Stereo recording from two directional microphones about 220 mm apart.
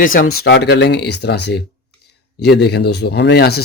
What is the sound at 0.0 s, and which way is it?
Speech, 40° left (ahead or behind).